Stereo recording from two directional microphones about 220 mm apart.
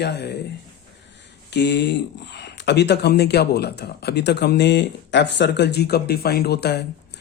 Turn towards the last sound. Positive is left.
turn(degrees=50)  # may be behind; listen again after turning